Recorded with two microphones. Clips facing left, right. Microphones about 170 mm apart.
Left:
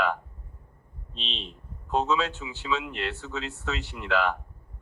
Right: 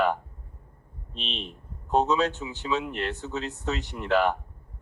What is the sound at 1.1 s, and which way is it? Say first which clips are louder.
Speech: right 3 dB; 55° right (ahead or behind).